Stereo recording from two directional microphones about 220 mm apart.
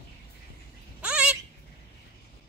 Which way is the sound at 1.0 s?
5° right (ahead or behind).